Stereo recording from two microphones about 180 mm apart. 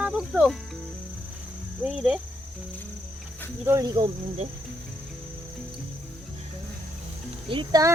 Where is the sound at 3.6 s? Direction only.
15° right (ahead or behind).